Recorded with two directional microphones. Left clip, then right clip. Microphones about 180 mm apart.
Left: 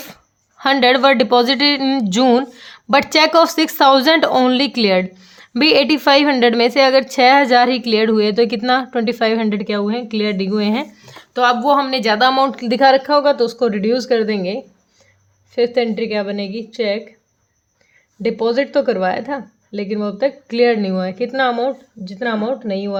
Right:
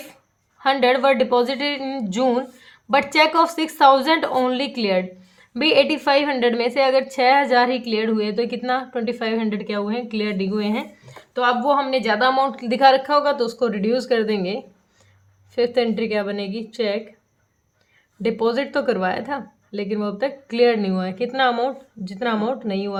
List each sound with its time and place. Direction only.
0.6 s speech: 55° left (ahead or behind); by 17.0 s 20° left (ahead or behind)
18.2 s speech: 20° left (ahead or behind)